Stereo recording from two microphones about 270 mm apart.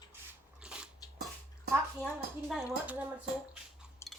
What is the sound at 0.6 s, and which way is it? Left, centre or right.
Dog, centre.